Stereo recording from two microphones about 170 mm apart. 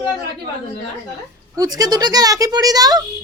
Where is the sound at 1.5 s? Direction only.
20° right (ahead or behind).